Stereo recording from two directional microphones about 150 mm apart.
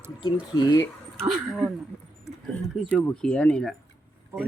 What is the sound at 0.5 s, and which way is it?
Speech, 30° left (ahead or behind).